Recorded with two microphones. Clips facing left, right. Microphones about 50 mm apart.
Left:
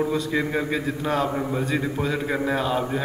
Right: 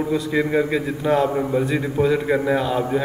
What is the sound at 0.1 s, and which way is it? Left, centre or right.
A man's voice, centre.